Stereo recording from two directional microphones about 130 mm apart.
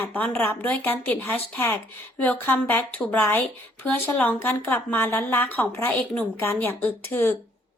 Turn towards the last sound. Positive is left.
turn(degrees=15)  # may be behind; listen again after turning